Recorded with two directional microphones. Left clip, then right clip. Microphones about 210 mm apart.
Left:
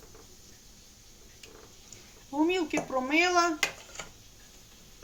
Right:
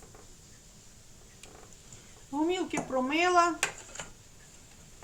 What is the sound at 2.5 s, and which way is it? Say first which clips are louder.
Speech: left 2 dB; 15° left (ahead or behind).